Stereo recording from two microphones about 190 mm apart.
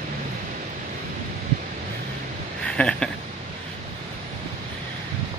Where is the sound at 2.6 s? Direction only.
5° left (ahead or behind).